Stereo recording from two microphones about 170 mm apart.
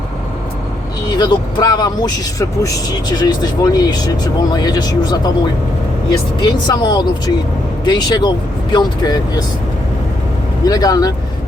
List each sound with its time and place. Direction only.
1.1 s speech: 25° left (ahead or behind)
10.7 s speech: 20° left (ahead or behind)